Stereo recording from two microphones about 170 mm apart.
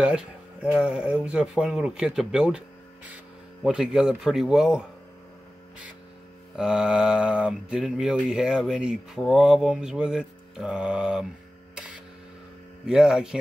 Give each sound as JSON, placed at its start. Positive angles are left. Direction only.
{"t": 0.0, "sound": "speech", "side_deg": -5}
{"t": 6.5, "sound": "speech", "side_deg": -5}
{"t": 12.8, "sound": "speech", "side_deg": -5}